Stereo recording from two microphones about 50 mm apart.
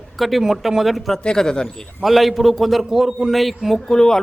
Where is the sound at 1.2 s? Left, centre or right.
Centre.